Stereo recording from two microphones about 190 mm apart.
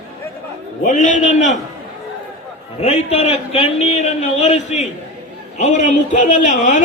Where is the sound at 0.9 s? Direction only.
40° left (ahead or behind).